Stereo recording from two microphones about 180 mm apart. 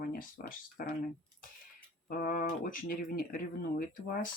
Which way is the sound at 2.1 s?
50° left (ahead or behind).